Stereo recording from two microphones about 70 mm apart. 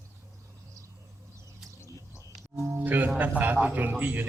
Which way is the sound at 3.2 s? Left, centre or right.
Right.